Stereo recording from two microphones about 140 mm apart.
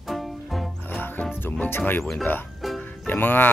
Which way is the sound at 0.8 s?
15° left (ahead or behind).